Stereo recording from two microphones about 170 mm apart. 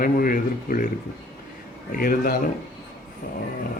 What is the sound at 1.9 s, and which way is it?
Speech, 55° left (ahead or behind).